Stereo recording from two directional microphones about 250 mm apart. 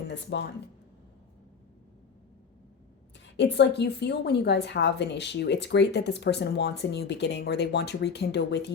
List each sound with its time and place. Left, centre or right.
0.1 s a woman's voice: left
3.3 s a woman's voice: left